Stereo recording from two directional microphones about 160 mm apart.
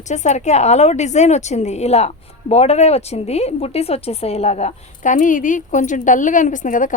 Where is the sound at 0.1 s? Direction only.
45° left (ahead or behind).